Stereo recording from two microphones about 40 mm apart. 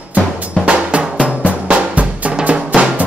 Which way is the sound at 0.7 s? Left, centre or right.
Right.